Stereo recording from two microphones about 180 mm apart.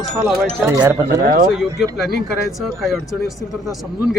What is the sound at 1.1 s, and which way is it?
Speech, 65° right (ahead or behind).